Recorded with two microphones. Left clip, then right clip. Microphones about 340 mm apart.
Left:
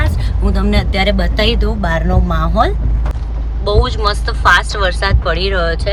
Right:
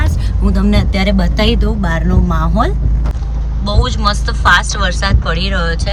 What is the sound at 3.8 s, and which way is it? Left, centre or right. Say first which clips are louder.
Speech: even; centre.